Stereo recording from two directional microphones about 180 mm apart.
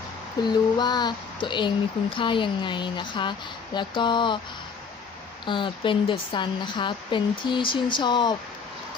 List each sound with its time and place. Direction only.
0.4 s speech: 25° left (ahead or behind)
5.5 s speech: 25° left (ahead or behind)